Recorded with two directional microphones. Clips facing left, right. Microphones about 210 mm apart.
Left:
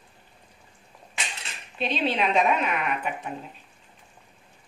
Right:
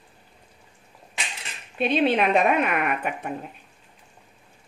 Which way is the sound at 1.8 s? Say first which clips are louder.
Right 5 dB; 55° right (ahead or behind).